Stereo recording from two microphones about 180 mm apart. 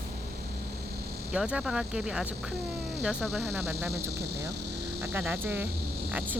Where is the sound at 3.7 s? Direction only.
15° right (ahead or behind).